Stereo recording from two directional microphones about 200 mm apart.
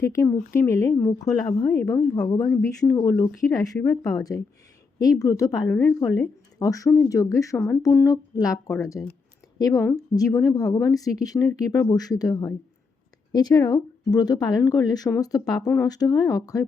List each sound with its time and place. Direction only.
0.0 s a woman's voice: 15° left (ahead or behind)
2.5 s a woman's voice: 5° left (ahead or behind)